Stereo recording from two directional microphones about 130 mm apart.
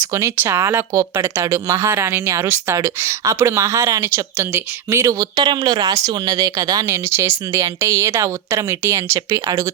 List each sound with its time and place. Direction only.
0.1 s speech: 20° right (ahead or behind)
5.4 s speech: 35° right (ahead or behind)